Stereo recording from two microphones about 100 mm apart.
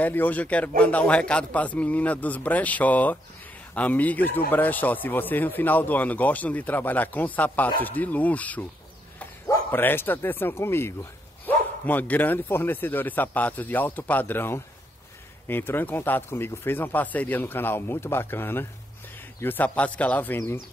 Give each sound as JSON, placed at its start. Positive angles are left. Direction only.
{"t": 0.0, "sound": "speech", "side_deg": 20}
{"t": 9.7, "sound": "speech", "side_deg": 20}